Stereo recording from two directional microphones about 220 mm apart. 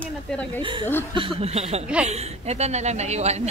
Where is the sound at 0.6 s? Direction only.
20° right (ahead or behind).